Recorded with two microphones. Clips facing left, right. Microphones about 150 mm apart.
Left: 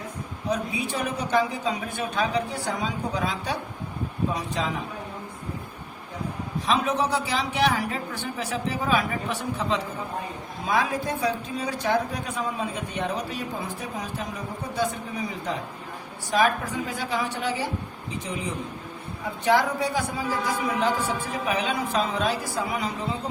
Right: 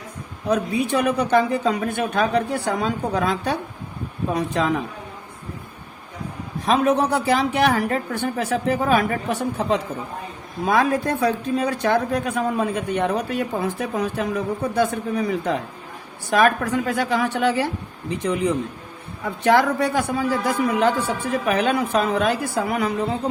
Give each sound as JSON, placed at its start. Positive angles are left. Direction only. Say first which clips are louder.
{"t": 0.5, "sound": "speech", "louder": "right 8 dB", "side_deg": -60}
{"t": 6.7, "sound": "a man's voice", "louder": "right 6 dB", "side_deg": -55}